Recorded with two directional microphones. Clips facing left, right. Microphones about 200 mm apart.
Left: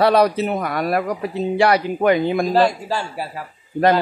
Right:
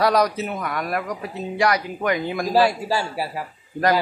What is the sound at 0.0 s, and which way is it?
Speech, 30° left (ahead or behind).